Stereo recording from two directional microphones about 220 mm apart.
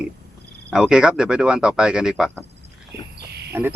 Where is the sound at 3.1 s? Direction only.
50° right (ahead or behind).